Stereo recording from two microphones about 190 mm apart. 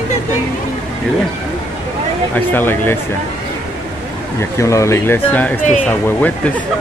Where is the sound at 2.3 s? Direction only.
10° left (ahead or behind).